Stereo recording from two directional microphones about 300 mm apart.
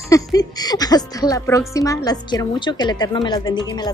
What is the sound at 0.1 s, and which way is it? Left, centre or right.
Speech, centre.